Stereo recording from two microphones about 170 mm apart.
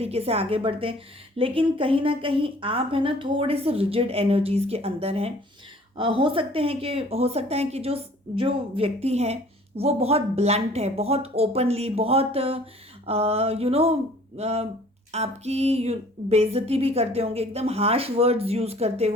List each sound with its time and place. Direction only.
0.0 s a woman's voice: 35° right (ahead or behind)